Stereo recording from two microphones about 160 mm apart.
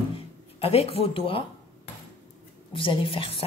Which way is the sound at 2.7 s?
30° left (ahead or behind).